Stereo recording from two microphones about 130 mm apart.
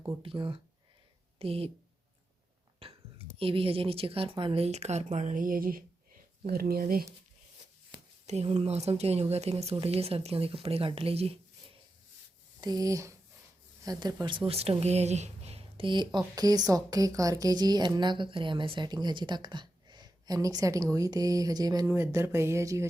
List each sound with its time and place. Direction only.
0.2 s speech: 40° right (ahead or behind)
2.8 s a sound: 50° right (ahead or behind)
3.3 s speech: 45° right (ahead or behind); by 6.9 s 90° right
8.3 s speech: 55° right (ahead or behind)
12.5 s speech: 30° right (ahead or behind)
21.9 s speech: 20° right (ahead or behind)